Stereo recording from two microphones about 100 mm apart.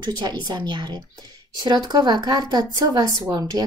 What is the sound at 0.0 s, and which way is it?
A woman's voice, 45° right (ahead or behind).